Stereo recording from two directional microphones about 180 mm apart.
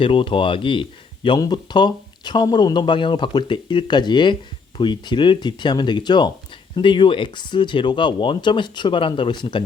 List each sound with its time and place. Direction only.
0.0 s speech: 30° left (ahead or behind)